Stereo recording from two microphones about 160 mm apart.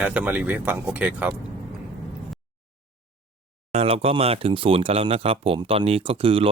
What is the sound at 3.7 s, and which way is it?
Speech, 35° right (ahead or behind).